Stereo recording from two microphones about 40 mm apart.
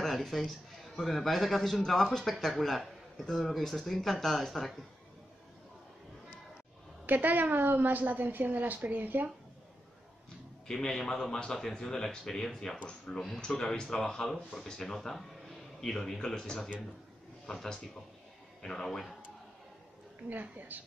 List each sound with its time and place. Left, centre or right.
0.0 s a man's voice: centre
7.1 s a woman's voice: right
10.7 s speech: centre
18.6 s speech: centre
18.9 s speech: centre
20.2 s a woman's voice: right